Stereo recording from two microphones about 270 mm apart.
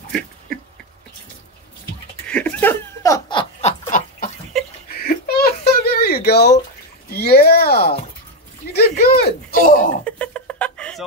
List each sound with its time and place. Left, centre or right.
2.2 s snicker: centre
4.9 s a sound: left
10.0 s music: centre